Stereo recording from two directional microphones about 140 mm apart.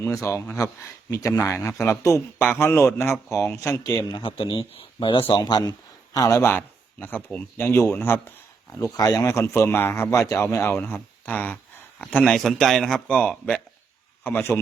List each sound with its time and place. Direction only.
0.0 s a man's voice: 20° left (ahead or behind)